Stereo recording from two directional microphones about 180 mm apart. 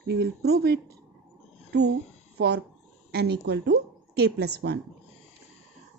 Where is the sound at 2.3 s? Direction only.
65° right (ahead or behind).